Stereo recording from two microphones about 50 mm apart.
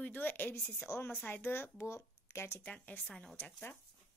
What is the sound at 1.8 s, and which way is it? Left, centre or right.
Speech, left.